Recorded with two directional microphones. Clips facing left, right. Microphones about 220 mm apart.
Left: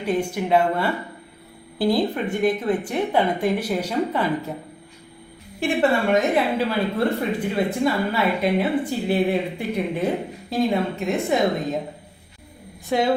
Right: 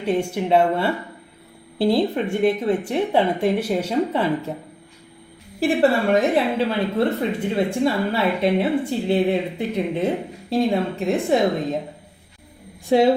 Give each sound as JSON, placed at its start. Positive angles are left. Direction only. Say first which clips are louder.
{"t": 0.0, "sound": "speech", "louder": "right 1 dB", "side_deg": -25}
{"t": 5.5, "sound": "a woman's voice", "louder": "right 2 dB", "side_deg": -35}
{"t": 10.5, "sound": "a woman's voice", "louder": "right 2 dB", "side_deg": -30}
{"t": 12.9, "sound": "speech", "louder": "right 5 dB", "side_deg": -30}